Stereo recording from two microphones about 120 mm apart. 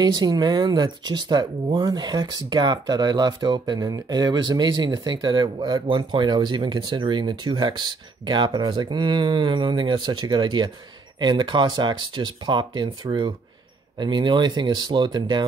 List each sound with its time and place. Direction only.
0.0 s speech: 35° right (ahead or behind)